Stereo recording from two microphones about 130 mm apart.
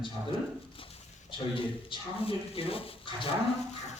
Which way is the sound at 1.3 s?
40° left (ahead or behind).